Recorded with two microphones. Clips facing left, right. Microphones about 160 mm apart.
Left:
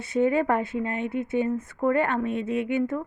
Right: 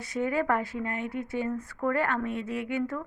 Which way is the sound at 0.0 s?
25° left (ahead or behind).